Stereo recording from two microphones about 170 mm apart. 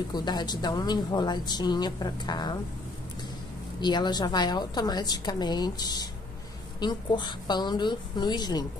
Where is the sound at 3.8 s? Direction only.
25° left (ahead or behind).